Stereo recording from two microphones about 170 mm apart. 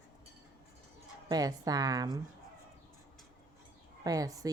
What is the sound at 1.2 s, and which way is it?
Speech, 20° right (ahead or behind).